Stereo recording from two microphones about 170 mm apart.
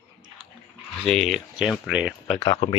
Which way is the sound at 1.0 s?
Centre (ahead or behind).